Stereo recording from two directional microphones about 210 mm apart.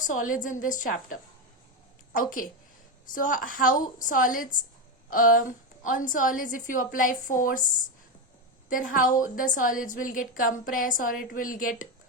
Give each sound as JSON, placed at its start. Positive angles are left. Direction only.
{"t": 0.0, "sound": "a woman's voice", "side_deg": 40}
{"t": 8.7, "sound": "a woman's voice", "side_deg": 40}